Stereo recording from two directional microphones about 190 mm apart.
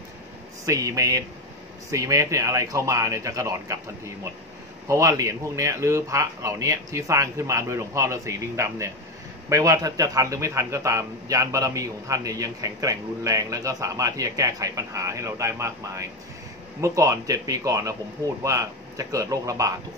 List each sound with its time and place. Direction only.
0.7 s a man's voice: 15° right (ahead or behind)